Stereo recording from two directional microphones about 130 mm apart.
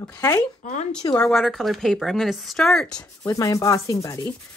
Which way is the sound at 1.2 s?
5° left (ahead or behind).